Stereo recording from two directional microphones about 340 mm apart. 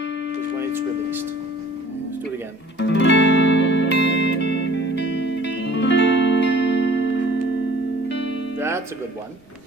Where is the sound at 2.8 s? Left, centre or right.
Left.